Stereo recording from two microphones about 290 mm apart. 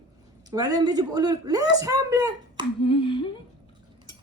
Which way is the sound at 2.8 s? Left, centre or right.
Centre.